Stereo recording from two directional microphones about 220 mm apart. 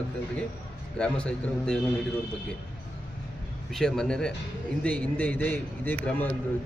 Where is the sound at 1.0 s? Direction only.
5° left (ahead or behind).